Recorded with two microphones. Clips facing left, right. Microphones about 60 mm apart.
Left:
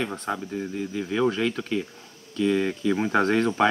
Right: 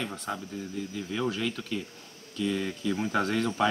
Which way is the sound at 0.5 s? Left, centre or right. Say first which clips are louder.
Left 6 dB; left.